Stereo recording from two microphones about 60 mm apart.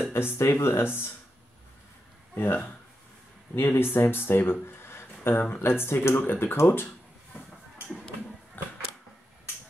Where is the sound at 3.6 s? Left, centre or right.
Left.